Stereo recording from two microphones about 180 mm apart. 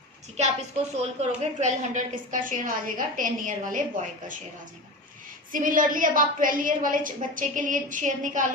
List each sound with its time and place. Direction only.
0.9 s a woman's voice: 40° right (ahead or behind)
5.5 s a woman's voice: 50° right (ahead or behind)